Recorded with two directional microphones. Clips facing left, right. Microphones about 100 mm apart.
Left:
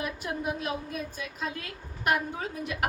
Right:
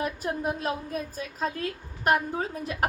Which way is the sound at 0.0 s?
40° right (ahead or behind).